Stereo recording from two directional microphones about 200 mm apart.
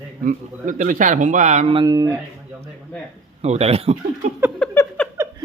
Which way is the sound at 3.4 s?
30° right (ahead or behind).